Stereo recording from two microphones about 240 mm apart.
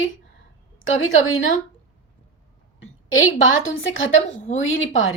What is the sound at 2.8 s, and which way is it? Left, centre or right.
A woman's voice, left.